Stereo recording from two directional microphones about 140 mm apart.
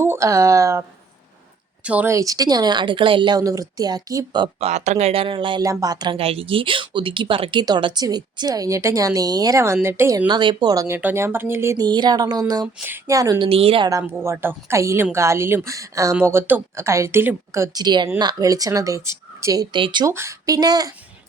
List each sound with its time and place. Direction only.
0.0 s a woman's voice: 20° right (ahead or behind)
1.8 s speech: 10° right (ahead or behind)
2.0 s a woman's voice: 25° right (ahead or behind)
4.6 s a woman's voice: 55° right (ahead or behind); by 6.1 s 30° right (ahead or behind)
6.1 s a woman's voice: 45° right (ahead or behind); by 10.2 s 15° right (ahead or behind)
10.2 s a woman's voice: 35° right (ahead or behind)
11.9 s a woman's voice: 30° right (ahead or behind)
12.6 s a woman's voice: 15° right (ahead or behind)
13.5 s speech: 40° right (ahead or behind)
13.8 s a woman's voice: 25° right (ahead or behind)
17.8 s a woman's voice: 30° right (ahead or behind)
19.7 s speech: 35° right (ahead or behind)
20.1 s a woman's voice: 20° right (ahead or behind)